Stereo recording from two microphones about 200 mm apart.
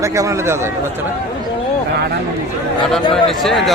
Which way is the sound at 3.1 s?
Centre (ahead or behind).